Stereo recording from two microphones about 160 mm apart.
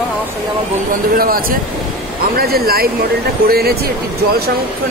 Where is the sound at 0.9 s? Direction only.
65° right (ahead or behind).